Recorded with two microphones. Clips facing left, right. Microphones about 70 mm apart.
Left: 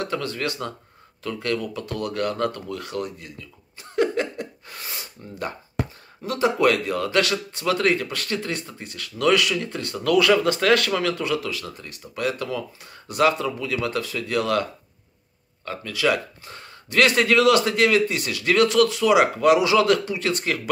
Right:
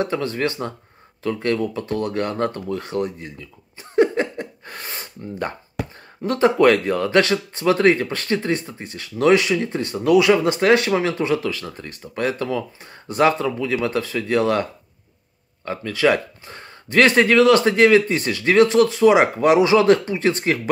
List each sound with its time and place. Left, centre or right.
0.0 s speech: right
3.9 s a sound: right
4.6 s gasp: right
6.2 s speech: right